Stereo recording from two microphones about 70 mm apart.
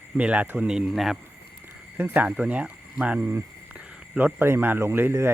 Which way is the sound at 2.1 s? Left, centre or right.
Right.